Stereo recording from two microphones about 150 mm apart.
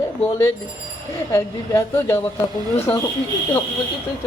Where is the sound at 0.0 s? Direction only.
20° left (ahead or behind).